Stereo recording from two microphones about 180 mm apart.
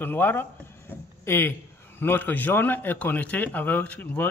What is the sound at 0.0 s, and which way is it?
Speech, 10° left (ahead or behind).